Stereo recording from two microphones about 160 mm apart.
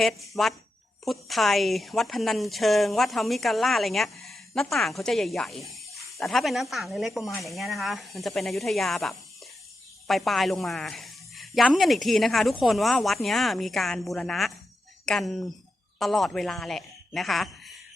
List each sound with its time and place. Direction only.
0.0 s speech: centre (ahead or behind)